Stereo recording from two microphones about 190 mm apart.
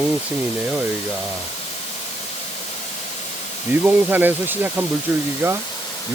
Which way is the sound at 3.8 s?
10° right (ahead or behind).